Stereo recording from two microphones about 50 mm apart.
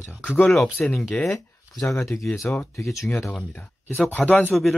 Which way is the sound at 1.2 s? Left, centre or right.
Centre.